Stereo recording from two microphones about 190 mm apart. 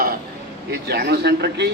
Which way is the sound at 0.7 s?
55° right (ahead or behind).